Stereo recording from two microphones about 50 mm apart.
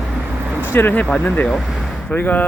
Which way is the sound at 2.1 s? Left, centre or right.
Left.